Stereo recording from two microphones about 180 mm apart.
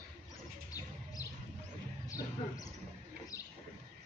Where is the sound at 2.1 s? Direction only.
20° left (ahead or behind).